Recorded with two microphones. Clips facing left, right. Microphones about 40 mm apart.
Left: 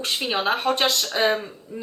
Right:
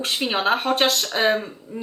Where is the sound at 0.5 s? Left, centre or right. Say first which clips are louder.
Right 1 dB; right.